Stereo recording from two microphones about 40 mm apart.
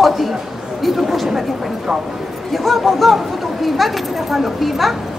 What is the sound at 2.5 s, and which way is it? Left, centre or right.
A woman's voice, centre.